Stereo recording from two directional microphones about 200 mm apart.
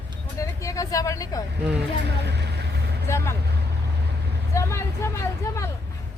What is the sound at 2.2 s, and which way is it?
Vehicle, 55° right (ahead or behind).